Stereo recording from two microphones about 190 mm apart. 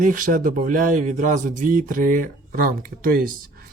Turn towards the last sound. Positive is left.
turn(degrees=-50)  # may be behind; listen again after turning